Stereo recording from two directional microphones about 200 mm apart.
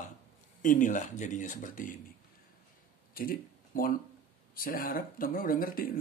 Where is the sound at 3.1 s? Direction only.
45° left (ahead or behind).